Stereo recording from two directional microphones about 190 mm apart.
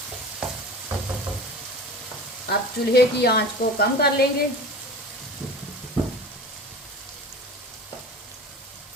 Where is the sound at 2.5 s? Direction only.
55° left (ahead or behind).